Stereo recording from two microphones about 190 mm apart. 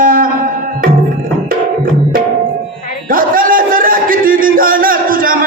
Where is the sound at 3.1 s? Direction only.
50° right (ahead or behind).